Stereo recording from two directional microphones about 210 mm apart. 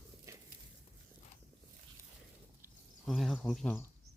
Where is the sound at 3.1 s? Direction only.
Centre (ahead or behind).